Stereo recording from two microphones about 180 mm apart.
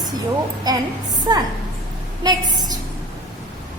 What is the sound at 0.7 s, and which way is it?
A woman's voice, 20° right (ahead or behind).